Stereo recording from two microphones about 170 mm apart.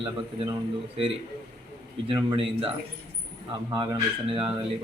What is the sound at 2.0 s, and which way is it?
Speech, 30° right (ahead or behind).